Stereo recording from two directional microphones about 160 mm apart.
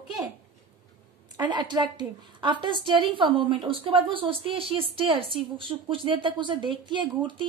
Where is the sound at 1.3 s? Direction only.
30° right (ahead or behind).